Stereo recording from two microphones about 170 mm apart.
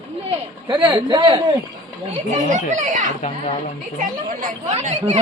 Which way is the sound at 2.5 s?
45° right (ahead or behind).